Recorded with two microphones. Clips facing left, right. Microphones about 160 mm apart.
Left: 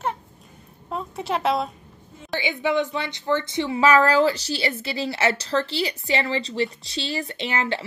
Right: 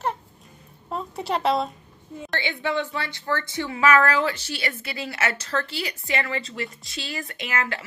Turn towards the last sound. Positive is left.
turn(degrees=30)  # may be behind; listen again after turning